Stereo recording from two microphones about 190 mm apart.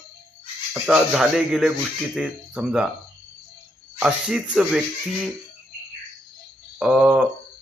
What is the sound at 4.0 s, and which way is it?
Speech, 5° right (ahead or behind).